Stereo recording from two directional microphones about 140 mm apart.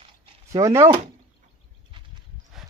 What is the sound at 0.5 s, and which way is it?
Speech, 25° right (ahead or behind).